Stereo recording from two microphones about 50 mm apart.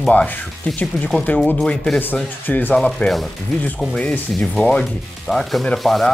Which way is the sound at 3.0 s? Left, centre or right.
Left.